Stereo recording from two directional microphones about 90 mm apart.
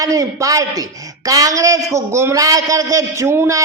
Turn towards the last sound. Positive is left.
turn(degrees=-30)  # may be behind; listen again after turning